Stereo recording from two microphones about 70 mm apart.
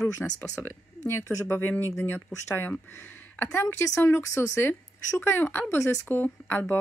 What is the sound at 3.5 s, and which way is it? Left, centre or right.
A woman's voice, left.